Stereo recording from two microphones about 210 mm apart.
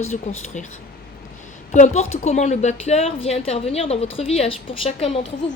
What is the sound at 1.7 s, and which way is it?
A woman's voice, 35° left (ahead or behind).